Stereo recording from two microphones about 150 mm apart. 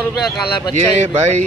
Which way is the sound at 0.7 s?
55° right (ahead or behind).